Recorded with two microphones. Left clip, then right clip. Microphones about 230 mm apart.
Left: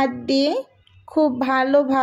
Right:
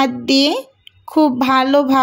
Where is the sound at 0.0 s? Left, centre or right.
Right.